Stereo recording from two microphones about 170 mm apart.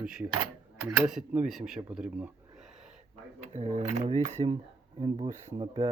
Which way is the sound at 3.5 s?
40° right (ahead or behind).